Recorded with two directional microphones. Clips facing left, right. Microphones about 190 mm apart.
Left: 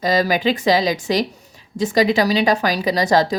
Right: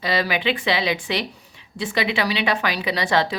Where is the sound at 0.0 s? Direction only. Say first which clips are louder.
Left 5 dB; 40° left (ahead or behind).